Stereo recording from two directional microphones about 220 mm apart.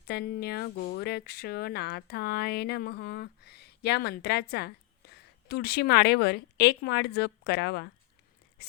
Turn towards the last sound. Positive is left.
turn(degrees=50)  # may be behind; listen again after turning